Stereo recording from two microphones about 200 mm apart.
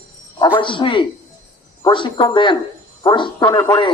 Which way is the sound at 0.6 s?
25° left (ahead or behind).